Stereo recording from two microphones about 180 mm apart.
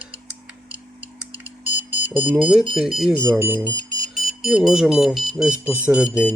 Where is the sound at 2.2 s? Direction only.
10° right (ahead or behind).